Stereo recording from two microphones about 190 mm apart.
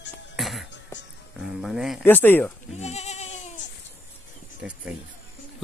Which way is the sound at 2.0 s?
10° left (ahead or behind).